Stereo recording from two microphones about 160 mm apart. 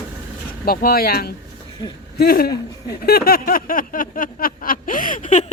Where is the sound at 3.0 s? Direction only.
70° left (ahead or behind).